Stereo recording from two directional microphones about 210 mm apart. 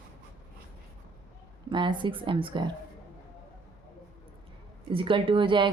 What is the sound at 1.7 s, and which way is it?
Speech, 20° right (ahead or behind).